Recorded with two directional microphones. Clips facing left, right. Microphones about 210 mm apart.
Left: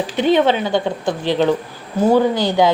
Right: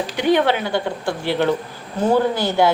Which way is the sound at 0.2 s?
20° left (ahead or behind).